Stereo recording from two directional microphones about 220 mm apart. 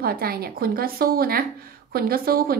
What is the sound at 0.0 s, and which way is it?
A woman's voice, 45° right (ahead or behind).